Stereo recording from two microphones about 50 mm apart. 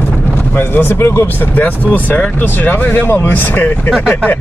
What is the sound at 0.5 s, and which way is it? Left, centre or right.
Speech, left.